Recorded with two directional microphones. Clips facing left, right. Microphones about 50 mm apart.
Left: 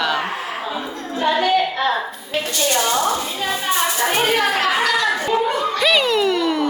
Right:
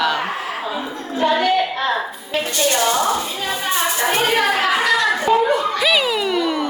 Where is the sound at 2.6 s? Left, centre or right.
Right.